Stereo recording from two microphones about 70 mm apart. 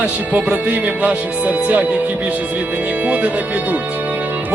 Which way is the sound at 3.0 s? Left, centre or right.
Right.